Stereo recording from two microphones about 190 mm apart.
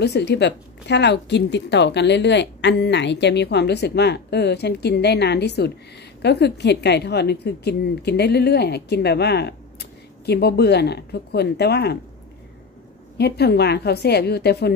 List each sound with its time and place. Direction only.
0.0 s a woman's voice: 60° left (ahead or behind)
13.2 s a woman's voice: 60° left (ahead or behind)